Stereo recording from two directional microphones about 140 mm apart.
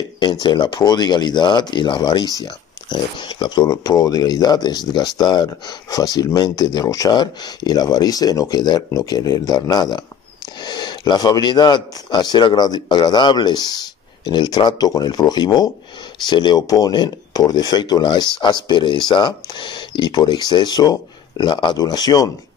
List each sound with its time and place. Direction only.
0.2 s speech: 30° left (ahead or behind)